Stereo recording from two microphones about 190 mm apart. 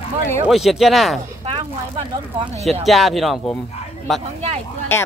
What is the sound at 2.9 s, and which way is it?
Speech, centre (ahead or behind).